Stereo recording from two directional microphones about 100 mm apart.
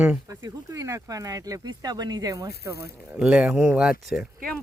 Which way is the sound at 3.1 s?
10° right (ahead or behind).